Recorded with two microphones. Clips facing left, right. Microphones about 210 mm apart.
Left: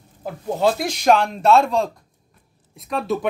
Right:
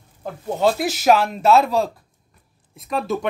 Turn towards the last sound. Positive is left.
turn(degrees=0)  # may be behind; listen again after turning